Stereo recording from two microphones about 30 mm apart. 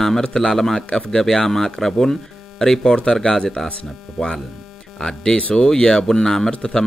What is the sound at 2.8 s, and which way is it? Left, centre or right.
Speech, left.